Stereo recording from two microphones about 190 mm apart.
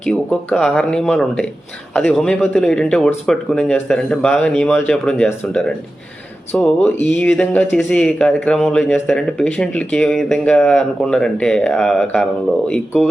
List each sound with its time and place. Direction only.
0.1 s speech: centre (ahead or behind)